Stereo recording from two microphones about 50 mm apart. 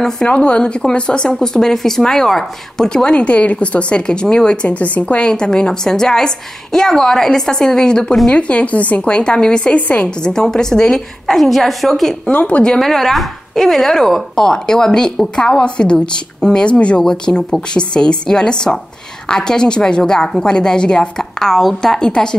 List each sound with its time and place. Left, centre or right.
0.4 s a woman's voice: centre
9.8 s a woman's voice: left
10.2 s speech: centre
12.3 s a woman's voice: left
12.7 s speech: centre